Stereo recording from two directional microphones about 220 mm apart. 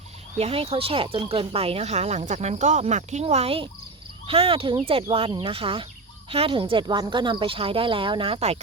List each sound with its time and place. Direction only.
0.3 s speech: 25° right (ahead or behind)